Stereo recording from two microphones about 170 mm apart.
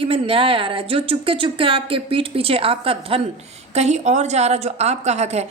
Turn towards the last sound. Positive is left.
turn(degrees=-40)  # may be behind; listen again after turning